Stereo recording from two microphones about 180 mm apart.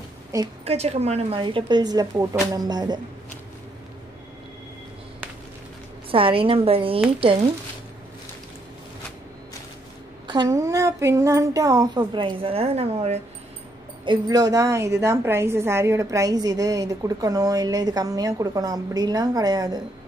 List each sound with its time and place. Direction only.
0.7 s a woman's voice: 35° right (ahead or behind)
6.1 s a woman's voice: 30° right (ahead or behind)
10.2 s a woman's voice: 25° right (ahead or behind)
14.0 s a woman's voice: 25° right (ahead or behind)